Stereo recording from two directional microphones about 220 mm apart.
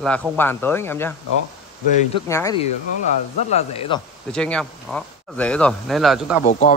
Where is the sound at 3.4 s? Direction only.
30° left (ahead or behind).